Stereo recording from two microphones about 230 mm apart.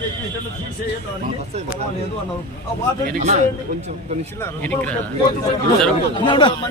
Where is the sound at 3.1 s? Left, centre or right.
Right.